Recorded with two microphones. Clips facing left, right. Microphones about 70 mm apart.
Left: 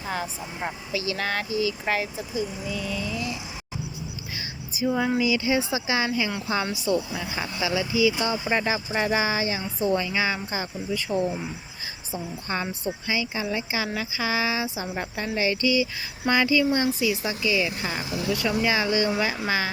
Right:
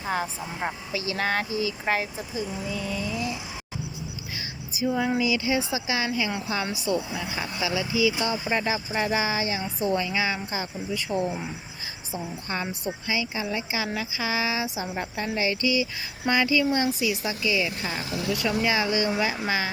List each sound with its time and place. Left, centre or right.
0.0 s speech: right
5.2 s speech: centre
6.9 s speech: centre
7.3 s speech: centre
11.2 s speech: centre
12.1 s speech: centre